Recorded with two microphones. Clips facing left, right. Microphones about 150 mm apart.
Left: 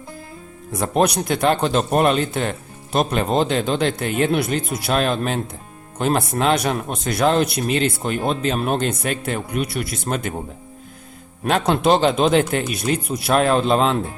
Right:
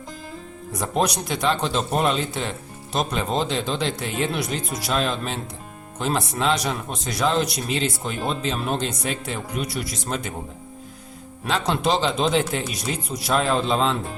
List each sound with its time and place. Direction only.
0.7 s a man's voice: 65° left (ahead or behind)
11.4 s a man's voice: 55° left (ahead or behind)